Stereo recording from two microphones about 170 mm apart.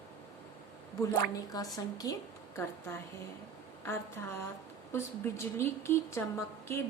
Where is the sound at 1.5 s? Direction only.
20° left (ahead or behind).